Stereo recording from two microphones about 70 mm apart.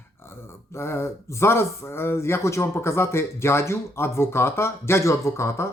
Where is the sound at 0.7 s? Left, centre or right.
Left.